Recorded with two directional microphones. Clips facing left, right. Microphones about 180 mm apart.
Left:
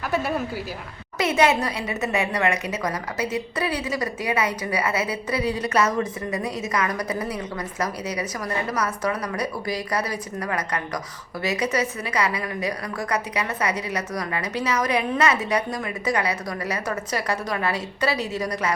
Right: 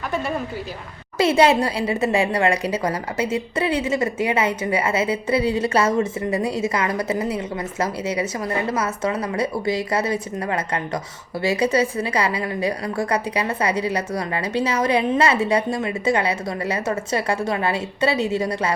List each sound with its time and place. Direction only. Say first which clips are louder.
0.1 s a woman's voice: left 1 dB; 5° left (ahead or behind)
1.2 s a woman's voice: right 4 dB; 30° right (ahead or behind)